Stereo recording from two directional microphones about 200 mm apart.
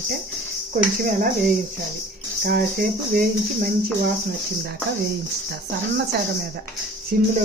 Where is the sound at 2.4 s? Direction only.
45° right (ahead or behind).